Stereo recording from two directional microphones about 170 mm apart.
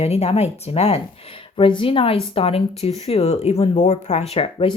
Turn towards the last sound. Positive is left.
turn(degrees=35)  # may be behind; listen again after turning